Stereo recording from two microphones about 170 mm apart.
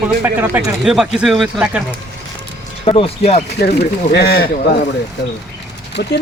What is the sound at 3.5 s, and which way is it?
Speech, 70° left (ahead or behind).